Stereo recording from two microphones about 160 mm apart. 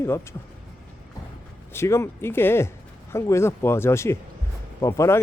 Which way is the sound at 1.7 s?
15° left (ahead or behind).